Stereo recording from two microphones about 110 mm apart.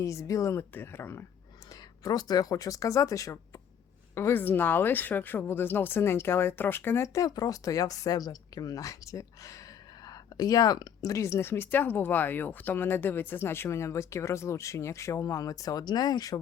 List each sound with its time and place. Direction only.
0.0 s speech: 30° left (ahead or behind)
2.0 s speech: 35° left (ahead or behind)